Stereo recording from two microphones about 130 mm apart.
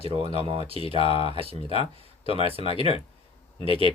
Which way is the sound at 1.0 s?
45° left (ahead or behind).